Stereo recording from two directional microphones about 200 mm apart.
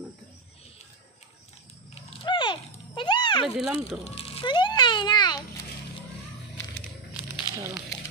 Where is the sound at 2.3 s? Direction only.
25° left (ahead or behind).